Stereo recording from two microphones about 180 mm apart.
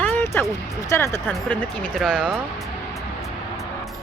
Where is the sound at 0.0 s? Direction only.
10° left (ahead or behind).